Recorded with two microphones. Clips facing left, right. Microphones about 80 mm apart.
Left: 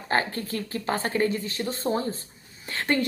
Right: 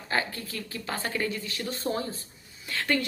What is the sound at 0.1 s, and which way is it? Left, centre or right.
A woman's voice, left.